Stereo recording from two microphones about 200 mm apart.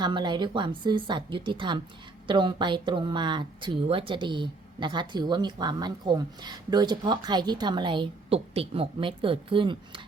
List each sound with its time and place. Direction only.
0.0 s speech: 20° right (ahead or behind)